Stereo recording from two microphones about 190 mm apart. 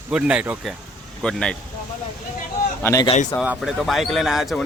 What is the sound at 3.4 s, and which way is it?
Speech, centre (ahead or behind).